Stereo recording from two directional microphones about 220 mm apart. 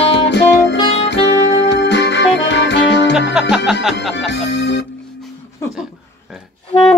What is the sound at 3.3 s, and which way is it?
Music, 5° right (ahead or behind).